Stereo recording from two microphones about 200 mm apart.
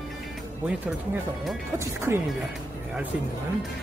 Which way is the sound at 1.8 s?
10° right (ahead or behind).